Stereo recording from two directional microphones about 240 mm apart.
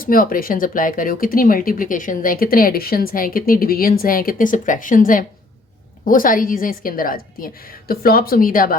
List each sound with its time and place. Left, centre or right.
0.0 s speech: left